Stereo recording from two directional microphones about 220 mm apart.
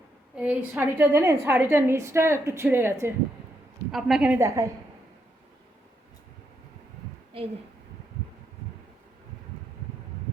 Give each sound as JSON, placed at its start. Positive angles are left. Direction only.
{"t": 0.3, "sound": "a woman's voice", "side_deg": -5}
{"t": 7.3, "sound": "a woman's voice", "side_deg": -25}